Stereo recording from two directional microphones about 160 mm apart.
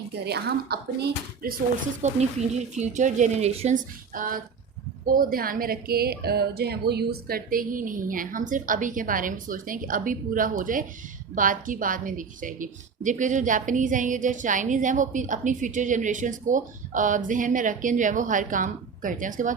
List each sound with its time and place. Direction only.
0.3 s a woman's voice: 90° right
1.4 s speech: 65° right (ahead or behind)
2.0 s a woman's voice: 45° right (ahead or behind)
4.1 s a woman's voice: 60° right (ahead or behind)